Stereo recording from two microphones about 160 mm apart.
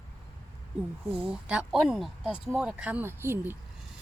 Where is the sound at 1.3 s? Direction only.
5° right (ahead or behind).